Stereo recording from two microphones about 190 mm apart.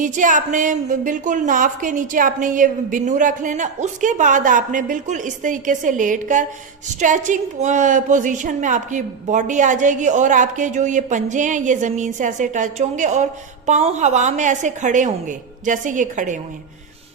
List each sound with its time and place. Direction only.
0.0 s a woman's voice: 40° right (ahead or behind)